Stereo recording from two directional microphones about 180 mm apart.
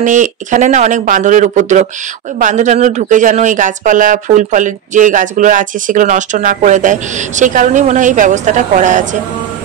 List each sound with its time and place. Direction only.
0.0 s speech: 45° right (ahead or behind)